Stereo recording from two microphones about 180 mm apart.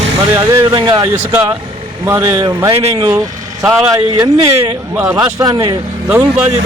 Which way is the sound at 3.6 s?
20° right (ahead or behind).